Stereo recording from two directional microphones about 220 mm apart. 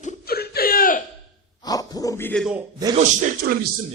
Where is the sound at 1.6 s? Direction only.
15° left (ahead or behind).